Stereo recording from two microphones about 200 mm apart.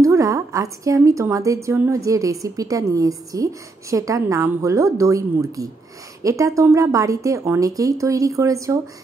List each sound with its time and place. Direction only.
0.0 s a woman's voice: 15° right (ahead or behind)